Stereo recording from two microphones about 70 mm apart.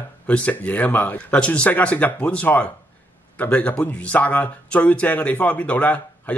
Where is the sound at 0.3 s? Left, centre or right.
Centre.